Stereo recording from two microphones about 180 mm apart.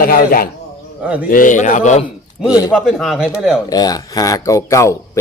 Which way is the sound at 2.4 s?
20° left (ahead or behind).